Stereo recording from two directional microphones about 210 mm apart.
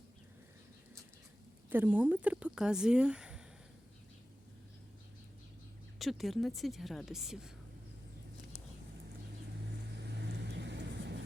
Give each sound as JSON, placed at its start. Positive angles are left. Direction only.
{"t": 1.7, "sound": "speech", "side_deg": -10}
{"t": 6.0, "sound": "speech", "side_deg": 0}
{"t": 10.2, "sound": "vehicle", "side_deg": -55}